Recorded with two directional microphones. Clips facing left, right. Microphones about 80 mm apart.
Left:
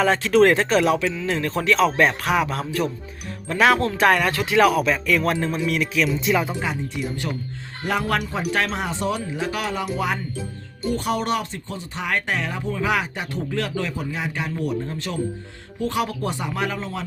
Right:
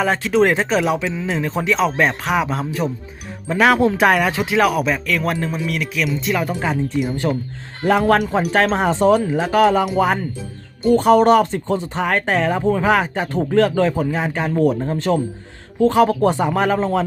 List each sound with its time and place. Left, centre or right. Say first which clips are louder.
0.0 s speech: even; centre
7.2 s a man's voice: right 8 dB; right